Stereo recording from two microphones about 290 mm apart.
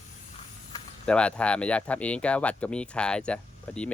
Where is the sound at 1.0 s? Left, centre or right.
Centre.